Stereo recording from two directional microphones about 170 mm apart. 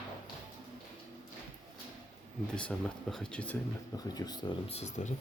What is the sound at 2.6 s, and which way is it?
Speech, 5° left (ahead or behind).